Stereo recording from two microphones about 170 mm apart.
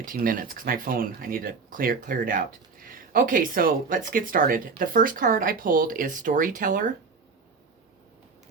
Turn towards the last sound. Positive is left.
turn(degrees=-50)  # may be behind; listen again after turning